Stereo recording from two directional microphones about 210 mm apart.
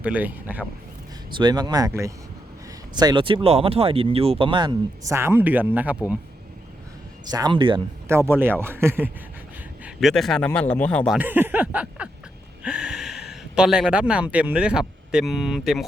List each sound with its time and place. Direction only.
0.0 s speech: 10° right (ahead or behind)
1.3 s speech: 20° right (ahead or behind)
7.3 s speech: 20° right (ahead or behind)
8.0 s speech: 10° right (ahead or behind)
9.8 s a man's voice: centre (ahead or behind)
11.2 s speech: 10° right (ahead or behind)